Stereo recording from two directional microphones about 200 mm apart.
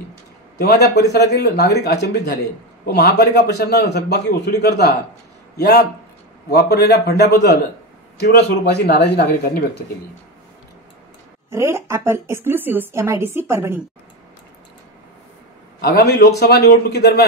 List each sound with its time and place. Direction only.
0.6 s a man's voice: 55° left (ahead or behind)
11.5 s a woman's voice: 15° right (ahead or behind)
15.8 s a man's voice: 50° left (ahead or behind)